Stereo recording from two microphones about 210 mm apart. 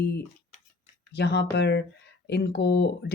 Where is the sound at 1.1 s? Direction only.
50° left (ahead or behind).